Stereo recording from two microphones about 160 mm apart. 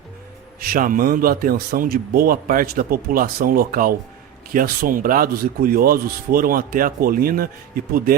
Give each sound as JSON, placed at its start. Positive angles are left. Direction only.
{"t": 0.6, "sound": "speech", "side_deg": -60}